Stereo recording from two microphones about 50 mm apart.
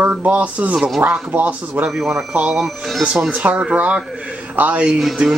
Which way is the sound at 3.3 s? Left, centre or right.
Right.